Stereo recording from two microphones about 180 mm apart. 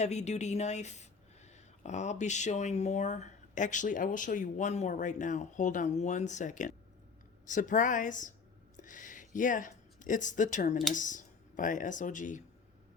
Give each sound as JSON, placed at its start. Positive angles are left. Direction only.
{"t": 0.0, "sound": "a woman's voice", "side_deg": 40}